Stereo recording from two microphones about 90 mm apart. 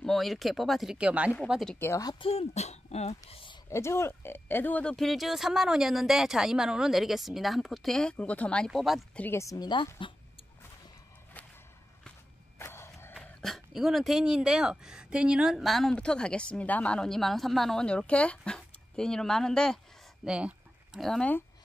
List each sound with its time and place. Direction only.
0.0 s speech: centre (ahead or behind)
0.9 s speech: 15° right (ahead or behind)
1.8 s speech: 25° left (ahead or behind)
2.2 s speech: 70° left (ahead or behind)
3.3 s speech: 90° left
3.7 s speech: 30° left (ahead or behind)
4.9 s speech: centre (ahead or behind)
9.3 s speech: 35° left (ahead or behind)
9.6 s a woman's voice: 55° left (ahead or behind)
12.5 s a sound: 30° left (ahead or behind)
13.1 s speech: 5° left (ahead or behind)
20.2 s a sound: 10° right (ahead or behind)
21.0 s speech: 5° left (ahead or behind)